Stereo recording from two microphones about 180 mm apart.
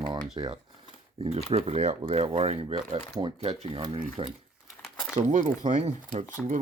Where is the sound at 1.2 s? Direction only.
35° right (ahead or behind).